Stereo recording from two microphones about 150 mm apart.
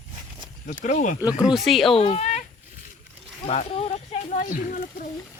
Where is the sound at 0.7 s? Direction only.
60° left (ahead or behind).